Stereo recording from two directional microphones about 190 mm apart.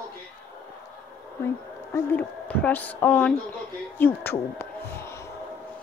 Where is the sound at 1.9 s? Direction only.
10° left (ahead or behind).